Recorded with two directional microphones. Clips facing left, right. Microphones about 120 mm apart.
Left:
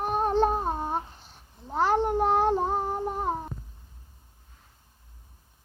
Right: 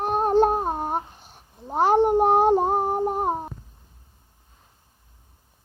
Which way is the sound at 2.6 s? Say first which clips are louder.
Right 5 dB; 50° right (ahead or behind).